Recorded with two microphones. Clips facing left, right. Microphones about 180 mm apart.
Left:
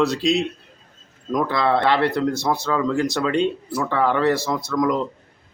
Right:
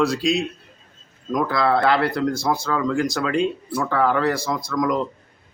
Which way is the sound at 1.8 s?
25° left (ahead or behind).